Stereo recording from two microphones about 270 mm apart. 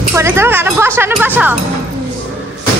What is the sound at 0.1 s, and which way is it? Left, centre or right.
A woman's voice, centre.